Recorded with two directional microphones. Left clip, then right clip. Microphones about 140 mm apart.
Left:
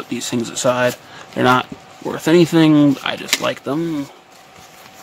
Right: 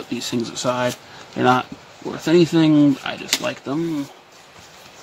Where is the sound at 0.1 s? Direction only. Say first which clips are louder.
Left 2 dB; 20° left (ahead or behind).